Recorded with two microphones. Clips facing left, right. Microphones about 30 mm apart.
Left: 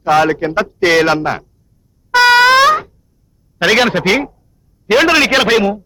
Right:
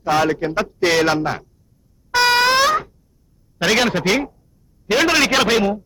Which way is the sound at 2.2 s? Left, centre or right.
Left.